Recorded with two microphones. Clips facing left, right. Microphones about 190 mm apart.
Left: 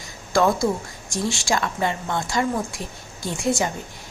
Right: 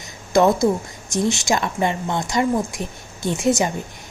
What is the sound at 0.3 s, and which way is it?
A woman's voice, 20° right (ahead or behind).